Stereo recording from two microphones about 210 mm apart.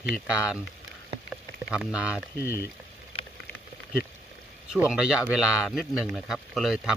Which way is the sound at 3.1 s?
25° left (ahead or behind).